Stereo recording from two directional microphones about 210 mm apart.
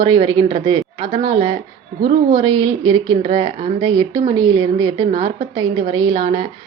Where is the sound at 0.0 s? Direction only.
20° right (ahead or behind).